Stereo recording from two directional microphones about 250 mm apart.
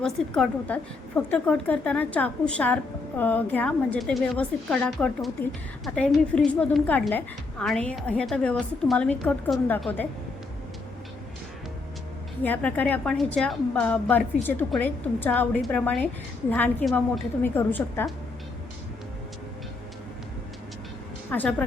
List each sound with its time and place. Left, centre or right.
0.0 s a woman's voice: centre
12.4 s a woman's voice: centre
21.2 s speech: centre